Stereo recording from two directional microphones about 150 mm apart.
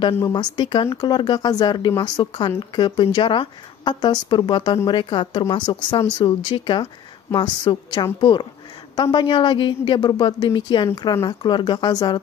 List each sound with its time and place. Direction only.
0.1 s a woman's voice: 25° left (ahead or behind)